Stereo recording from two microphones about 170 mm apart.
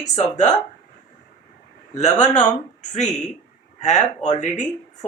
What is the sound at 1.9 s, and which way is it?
Speech, 45° left (ahead or behind).